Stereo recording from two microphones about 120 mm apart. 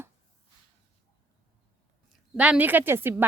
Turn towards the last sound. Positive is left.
turn(degrees=-20)  # may be behind; listen again after turning